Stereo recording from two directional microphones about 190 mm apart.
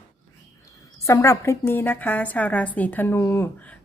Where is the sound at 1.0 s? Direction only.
15° left (ahead or behind).